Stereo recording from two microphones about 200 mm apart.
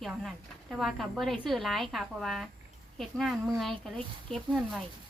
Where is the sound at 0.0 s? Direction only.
Centre (ahead or behind).